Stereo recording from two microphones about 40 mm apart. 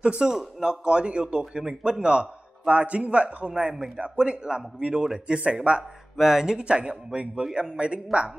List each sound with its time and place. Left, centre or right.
0.0 s a man's voice: right
0.3 s a man's voice: centre
6.1 s a man's voice: centre
6.6 s a man's voice: right